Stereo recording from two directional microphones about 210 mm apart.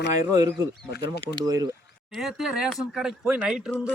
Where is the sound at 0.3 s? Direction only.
15° right (ahead or behind).